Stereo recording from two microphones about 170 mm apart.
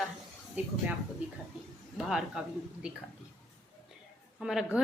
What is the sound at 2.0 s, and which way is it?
Stir, 5° right (ahead or behind).